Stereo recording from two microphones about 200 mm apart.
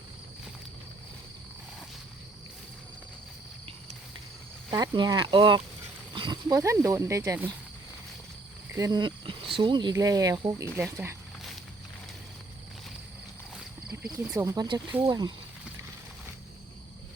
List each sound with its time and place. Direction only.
4.7 s speech: 20° right (ahead or behind)
8.7 s speech: 15° right (ahead or behind)
13.9 s speech: 10° right (ahead or behind)